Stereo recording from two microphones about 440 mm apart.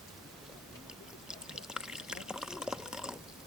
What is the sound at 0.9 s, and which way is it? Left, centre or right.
Pour, centre.